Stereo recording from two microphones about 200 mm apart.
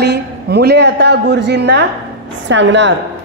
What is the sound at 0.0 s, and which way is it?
A woman's voice, 55° right (ahead or behind).